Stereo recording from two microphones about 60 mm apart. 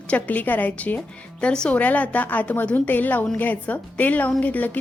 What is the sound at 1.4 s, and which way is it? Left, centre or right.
A woman's voice, centre.